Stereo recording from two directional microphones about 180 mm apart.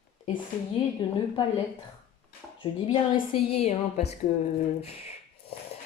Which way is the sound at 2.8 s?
30° left (ahead or behind).